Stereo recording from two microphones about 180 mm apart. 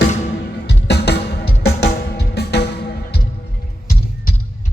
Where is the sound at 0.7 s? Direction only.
65° left (ahead or behind).